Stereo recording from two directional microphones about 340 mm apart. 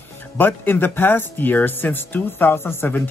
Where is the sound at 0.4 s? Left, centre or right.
Centre.